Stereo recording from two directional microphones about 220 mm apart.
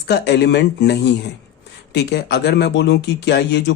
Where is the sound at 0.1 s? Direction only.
50° left (ahead or behind).